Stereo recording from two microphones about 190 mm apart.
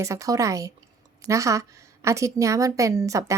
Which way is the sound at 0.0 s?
15° right (ahead or behind).